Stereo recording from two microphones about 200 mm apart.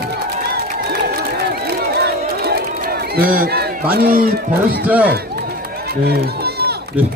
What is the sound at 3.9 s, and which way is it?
Speech, 45° right (ahead or behind).